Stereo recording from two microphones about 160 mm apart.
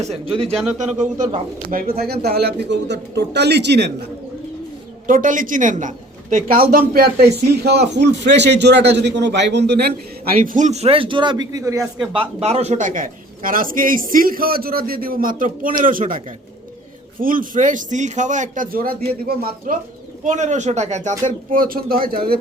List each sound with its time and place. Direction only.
0.0 s speech: 40° right (ahead or behind)
0.8 s speech: 50° right (ahead or behind)
1.7 s a man's voice: 65° right (ahead or behind)
2.2 s speech: 90° right
5.0 s a man's voice: 55° right (ahead or behind); by 11.9 s 20° right (ahead or behind)
12.1 s a man's voice: 35° right (ahead or behind); by 19.7 s 70° right (ahead or behind)
20.2 s speech: 50° right (ahead or behind); by 22.4 s 65° right (ahead or behind)